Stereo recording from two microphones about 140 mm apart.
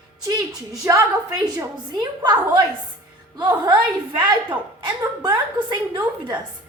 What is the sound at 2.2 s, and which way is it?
A woman's voice, 30° right (ahead or behind).